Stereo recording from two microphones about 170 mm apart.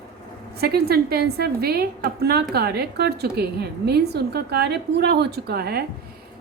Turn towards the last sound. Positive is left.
turn(degrees=-70)  # may be behind; listen again after turning